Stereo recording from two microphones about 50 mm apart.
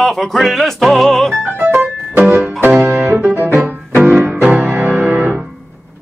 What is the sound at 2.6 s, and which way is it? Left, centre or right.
Music, right.